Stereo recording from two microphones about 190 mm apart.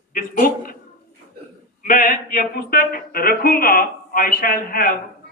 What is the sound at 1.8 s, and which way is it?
A man's voice, 45° left (ahead or behind).